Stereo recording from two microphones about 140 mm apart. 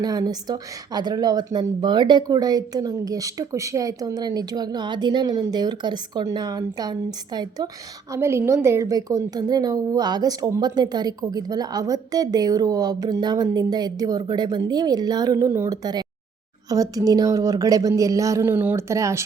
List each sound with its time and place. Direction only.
0.0 s a woman's voice: 25° right (ahead or behind)
8.1 s a woman's voice: 20° right (ahead or behind)